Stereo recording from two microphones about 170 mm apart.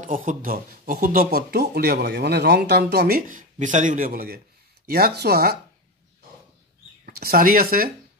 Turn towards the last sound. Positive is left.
turn(degrees=-60)  # may be behind; listen again after turning